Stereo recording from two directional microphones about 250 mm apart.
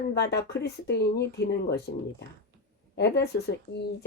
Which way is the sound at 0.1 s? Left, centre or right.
Left.